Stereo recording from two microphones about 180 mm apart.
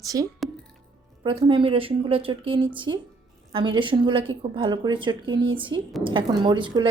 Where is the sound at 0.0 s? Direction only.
20° right (ahead or behind).